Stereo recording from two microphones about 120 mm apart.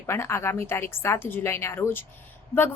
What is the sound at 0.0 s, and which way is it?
A woman's voice, 20° left (ahead or behind).